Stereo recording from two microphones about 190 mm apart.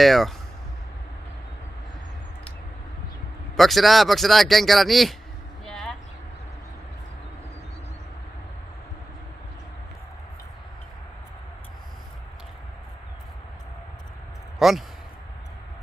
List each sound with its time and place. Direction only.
0.0 s speech: centre (ahead or behind)
3.6 s speech: centre (ahead or behind)
5.6 s a sound: 5° left (ahead or behind)
14.6 s speech: centre (ahead or behind)